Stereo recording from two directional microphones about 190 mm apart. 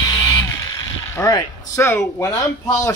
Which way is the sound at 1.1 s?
15° left (ahead or behind).